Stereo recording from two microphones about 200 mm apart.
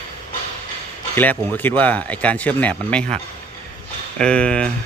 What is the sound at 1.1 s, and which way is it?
Speech, 10° left (ahead or behind).